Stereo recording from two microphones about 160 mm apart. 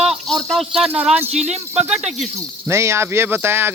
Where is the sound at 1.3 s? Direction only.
45° right (ahead or behind).